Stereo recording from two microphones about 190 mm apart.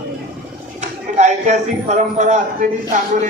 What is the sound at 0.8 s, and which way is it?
A man's voice, 40° right (ahead or behind).